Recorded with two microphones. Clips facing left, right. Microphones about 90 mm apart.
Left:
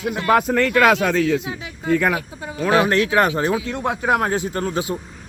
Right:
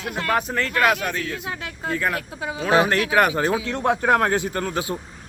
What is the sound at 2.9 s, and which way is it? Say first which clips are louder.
Speech: left 2 dB; 30° left (ahead or behind).